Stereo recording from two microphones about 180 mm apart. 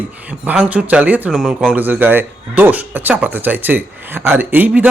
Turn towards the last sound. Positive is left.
turn(degrees=-10)  # may be behind; listen again after turning